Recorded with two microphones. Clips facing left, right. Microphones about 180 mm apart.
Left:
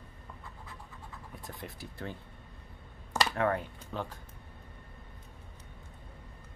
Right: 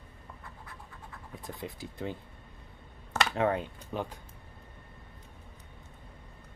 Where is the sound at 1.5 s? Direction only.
20° right (ahead or behind).